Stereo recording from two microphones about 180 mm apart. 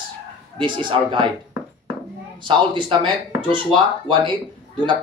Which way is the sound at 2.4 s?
25° right (ahead or behind).